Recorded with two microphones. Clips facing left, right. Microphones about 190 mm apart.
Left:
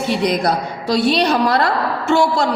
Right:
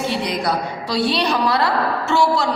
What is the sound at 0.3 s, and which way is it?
A woman's voice, 45° left (ahead or behind).